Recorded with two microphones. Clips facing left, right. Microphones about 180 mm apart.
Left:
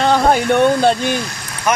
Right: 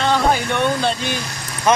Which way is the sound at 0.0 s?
45° left (ahead or behind).